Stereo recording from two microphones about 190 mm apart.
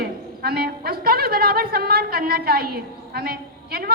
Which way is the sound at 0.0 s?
55° right (ahead or behind).